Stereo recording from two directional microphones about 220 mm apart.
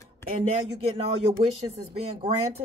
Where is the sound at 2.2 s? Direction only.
25° right (ahead or behind).